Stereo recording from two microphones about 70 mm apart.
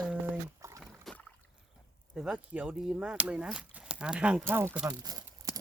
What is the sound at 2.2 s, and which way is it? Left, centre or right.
Speech, centre.